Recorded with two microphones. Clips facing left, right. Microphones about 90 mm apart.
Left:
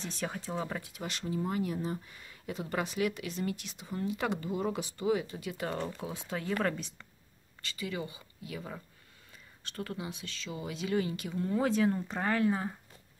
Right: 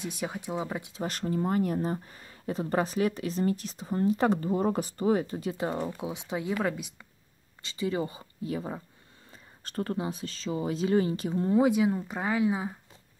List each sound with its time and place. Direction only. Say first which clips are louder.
0.0 s speech: right 3 dB; 10° right (ahead or behind)
1.0 s speech: right 6 dB; 45° right (ahead or behind)
5.6 s speech: right 2 dB; 20° right (ahead or behind)
7.6 s speech: right 7 dB; 25° right (ahead or behind)
11.6 s speech: right 4 dB; 10° right (ahead or behind)